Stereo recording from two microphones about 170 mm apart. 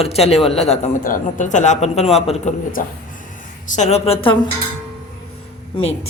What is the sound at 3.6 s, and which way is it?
Speech, 45° left (ahead or behind).